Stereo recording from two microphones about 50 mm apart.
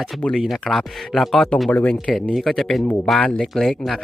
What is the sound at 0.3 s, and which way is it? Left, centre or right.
Speech, centre.